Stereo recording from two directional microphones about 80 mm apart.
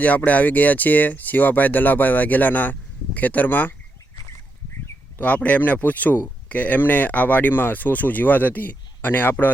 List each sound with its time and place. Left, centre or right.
0.3 s speech: centre
5.2 s speech: centre